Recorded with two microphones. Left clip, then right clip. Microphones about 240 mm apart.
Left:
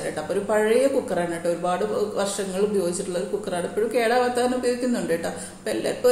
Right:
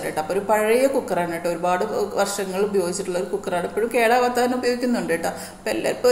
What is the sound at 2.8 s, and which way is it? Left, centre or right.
Speech, centre.